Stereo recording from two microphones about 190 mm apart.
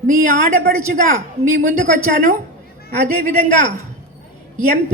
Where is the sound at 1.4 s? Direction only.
40° right (ahead or behind).